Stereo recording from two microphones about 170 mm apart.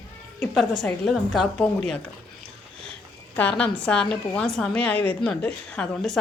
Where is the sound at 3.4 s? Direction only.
5° left (ahead or behind).